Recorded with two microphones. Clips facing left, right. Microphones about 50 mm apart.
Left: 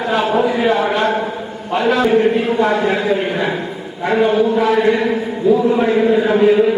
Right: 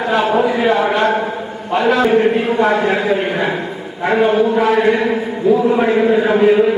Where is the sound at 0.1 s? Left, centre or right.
Centre.